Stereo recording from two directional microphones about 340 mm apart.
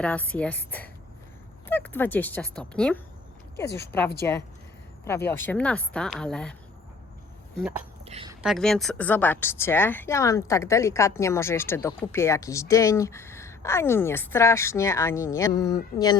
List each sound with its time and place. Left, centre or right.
0.0 s speech: centre
5.3 s speech: centre
7.6 s speech: centre
8.0 s a sound: centre
8.4 s speech: centre